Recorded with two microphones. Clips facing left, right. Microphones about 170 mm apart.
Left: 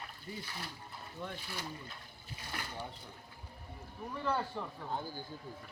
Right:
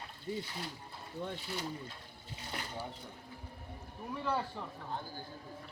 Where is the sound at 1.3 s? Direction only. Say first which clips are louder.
Right 4 dB; 25° right (ahead or behind).